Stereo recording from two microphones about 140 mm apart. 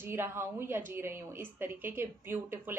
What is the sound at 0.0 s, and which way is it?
A woman's voice, 15° right (ahead or behind).